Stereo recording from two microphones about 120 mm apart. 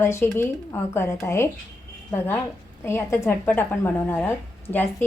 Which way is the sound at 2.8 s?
20° left (ahead or behind).